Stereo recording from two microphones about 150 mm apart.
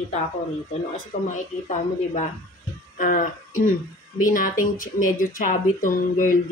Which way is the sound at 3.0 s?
65° left (ahead or behind).